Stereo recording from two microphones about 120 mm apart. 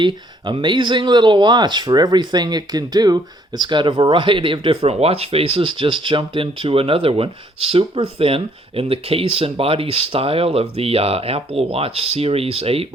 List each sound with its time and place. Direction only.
0.0 s speech: 45° right (ahead or behind)